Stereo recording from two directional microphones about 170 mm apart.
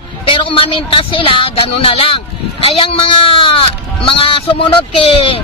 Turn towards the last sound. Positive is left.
turn(degrees=35)  # may be behind; listen again after turning